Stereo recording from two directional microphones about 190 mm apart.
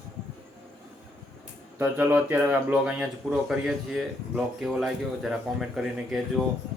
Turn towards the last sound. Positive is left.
turn(degrees=0)  # may be behind; listen again after turning